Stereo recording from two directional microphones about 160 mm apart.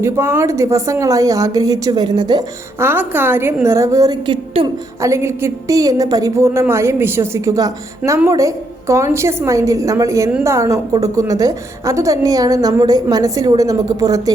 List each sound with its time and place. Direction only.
0.0 s a woman's voice: 15° right (ahead or behind)
2.8 s a woman's voice: 10° right (ahead or behind); by 4.7 s 30° right (ahead or behind)
5.0 s a woman's voice: 15° right (ahead or behind)